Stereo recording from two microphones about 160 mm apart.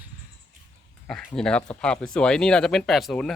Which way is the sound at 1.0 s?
5° left (ahead or behind).